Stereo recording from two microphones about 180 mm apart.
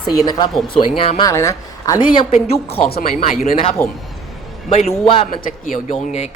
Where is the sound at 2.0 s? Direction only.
30° left (ahead or behind).